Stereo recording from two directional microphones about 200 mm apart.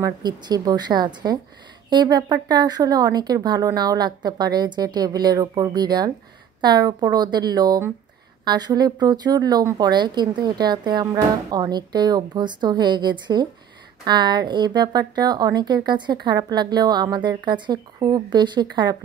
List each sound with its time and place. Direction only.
0.0 s a woman's voice: 20° right (ahead or behind)